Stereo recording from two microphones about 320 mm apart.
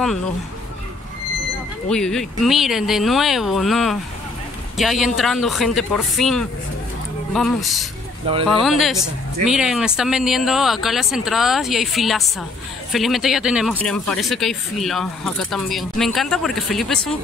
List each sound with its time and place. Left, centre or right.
1.9 s speech: centre